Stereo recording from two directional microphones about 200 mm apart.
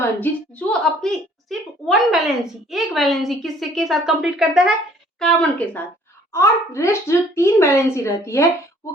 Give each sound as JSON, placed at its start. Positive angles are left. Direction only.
{"t": 0.0, "sound": "a woman's voice", "side_deg": 10}